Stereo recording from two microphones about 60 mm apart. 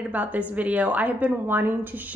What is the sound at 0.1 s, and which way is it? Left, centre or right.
Speech, right.